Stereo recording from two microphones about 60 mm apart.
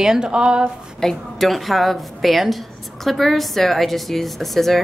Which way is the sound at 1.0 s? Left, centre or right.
Centre.